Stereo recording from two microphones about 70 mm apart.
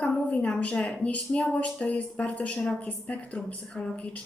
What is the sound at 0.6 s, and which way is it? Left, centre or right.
A woman's voice, centre.